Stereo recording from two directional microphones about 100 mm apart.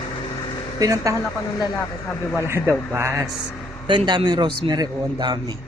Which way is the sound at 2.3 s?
25° right (ahead or behind).